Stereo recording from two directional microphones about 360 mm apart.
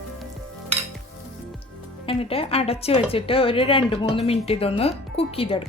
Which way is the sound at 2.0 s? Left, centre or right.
Centre.